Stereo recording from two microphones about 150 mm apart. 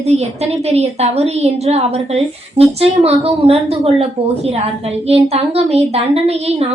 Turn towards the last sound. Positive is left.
turn(degrees=-45)  # may be behind; listen again after turning